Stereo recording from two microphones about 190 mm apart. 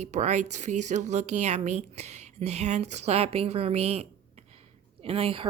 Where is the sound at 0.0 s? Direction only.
35° right (ahead or behind).